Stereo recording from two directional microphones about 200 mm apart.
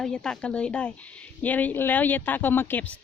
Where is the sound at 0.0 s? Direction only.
5° left (ahead or behind).